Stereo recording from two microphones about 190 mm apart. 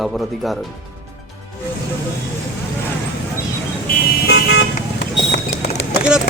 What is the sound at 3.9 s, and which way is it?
Car, 60° left (ahead or behind).